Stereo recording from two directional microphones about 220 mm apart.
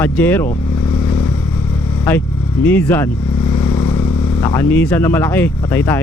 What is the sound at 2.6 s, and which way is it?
Speech, 5° left (ahead or behind).